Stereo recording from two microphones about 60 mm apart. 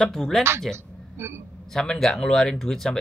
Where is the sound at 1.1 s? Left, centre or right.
Right.